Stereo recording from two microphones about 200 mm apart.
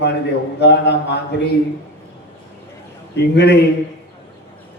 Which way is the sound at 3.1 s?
60° left (ahead or behind).